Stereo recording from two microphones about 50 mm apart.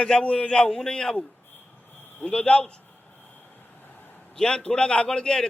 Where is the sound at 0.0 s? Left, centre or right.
Centre.